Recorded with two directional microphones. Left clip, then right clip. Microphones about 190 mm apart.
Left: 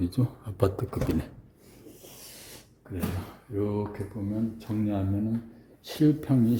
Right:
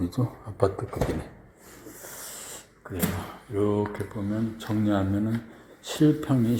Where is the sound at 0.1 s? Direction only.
20° left (ahead or behind).